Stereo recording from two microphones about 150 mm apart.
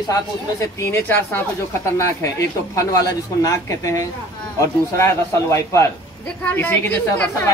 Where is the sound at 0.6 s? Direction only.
20° left (ahead or behind).